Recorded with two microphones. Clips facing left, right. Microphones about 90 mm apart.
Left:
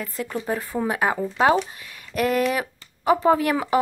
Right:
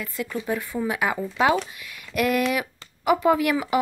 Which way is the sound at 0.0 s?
40° left (ahead or behind).